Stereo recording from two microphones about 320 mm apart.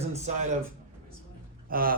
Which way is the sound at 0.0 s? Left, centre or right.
Centre.